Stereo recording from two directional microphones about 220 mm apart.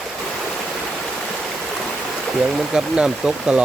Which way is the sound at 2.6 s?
Centre (ahead or behind).